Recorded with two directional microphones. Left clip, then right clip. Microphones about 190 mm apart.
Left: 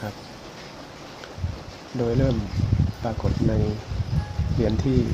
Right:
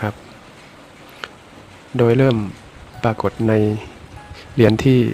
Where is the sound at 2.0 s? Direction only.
40° right (ahead or behind).